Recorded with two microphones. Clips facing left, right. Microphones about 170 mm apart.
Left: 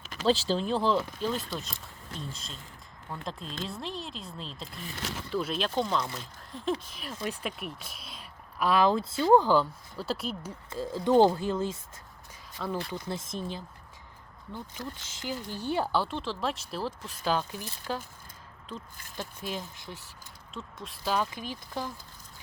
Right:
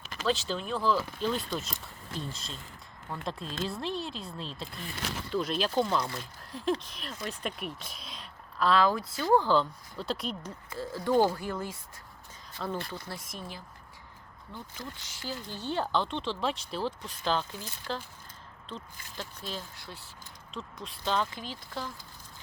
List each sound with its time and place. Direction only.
0.3 s speech: 30° left (ahead or behind)
1.2 s speech: 5° left (ahead or behind)
10.7 s speech: 20° left (ahead or behind)
12.6 s speech: centre (ahead or behind)
12.9 s speech: 20° left (ahead or behind)
15.1 s speech: 20° left (ahead or behind)
19.1 s speech: 15° left (ahead or behind)
20.5 s speech: centre (ahead or behind)